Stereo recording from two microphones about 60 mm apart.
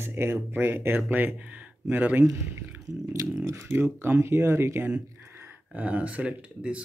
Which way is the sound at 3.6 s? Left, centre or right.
Right.